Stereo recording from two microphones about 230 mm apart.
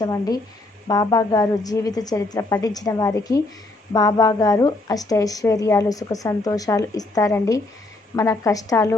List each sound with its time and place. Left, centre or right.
0.0 s a woman's voice: centre